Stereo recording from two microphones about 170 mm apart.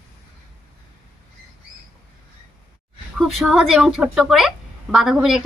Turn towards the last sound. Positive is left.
turn(degrees=0)  # may be behind; listen again after turning